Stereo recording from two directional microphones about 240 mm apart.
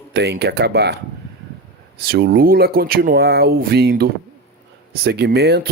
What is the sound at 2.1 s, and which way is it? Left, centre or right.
Speech, right.